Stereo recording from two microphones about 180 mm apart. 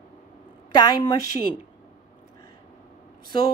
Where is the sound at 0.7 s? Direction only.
25° left (ahead or behind).